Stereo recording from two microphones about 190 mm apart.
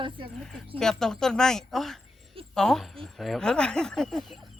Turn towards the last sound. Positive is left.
turn(degrees=0)  # may be behind; listen again after turning